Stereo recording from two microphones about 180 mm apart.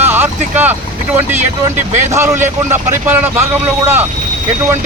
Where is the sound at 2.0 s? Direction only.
15° right (ahead or behind).